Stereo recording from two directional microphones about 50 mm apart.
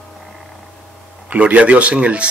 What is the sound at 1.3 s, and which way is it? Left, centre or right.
Speech, right.